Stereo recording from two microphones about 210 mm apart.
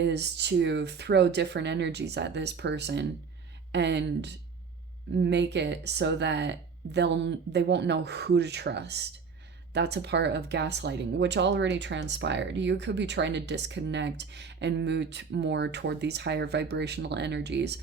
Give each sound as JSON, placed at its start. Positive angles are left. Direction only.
{"t": 0.0, "sound": "speech", "side_deg": -55}